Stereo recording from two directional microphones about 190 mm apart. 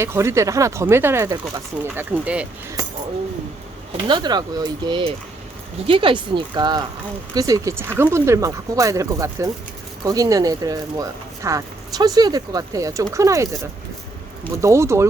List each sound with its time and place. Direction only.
0.0 s speech: 15° right (ahead or behind)
2.8 s a sound: 20° right (ahead or behind)
4.0 s speech: 25° right (ahead or behind)